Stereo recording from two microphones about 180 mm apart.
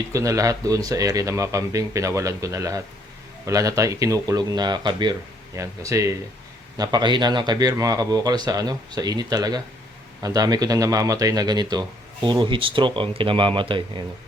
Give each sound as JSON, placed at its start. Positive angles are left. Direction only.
{"t": 0.1, "sound": "speech", "side_deg": -20}